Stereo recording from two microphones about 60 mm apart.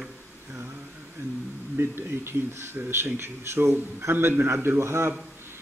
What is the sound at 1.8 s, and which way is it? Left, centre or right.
Speech, right.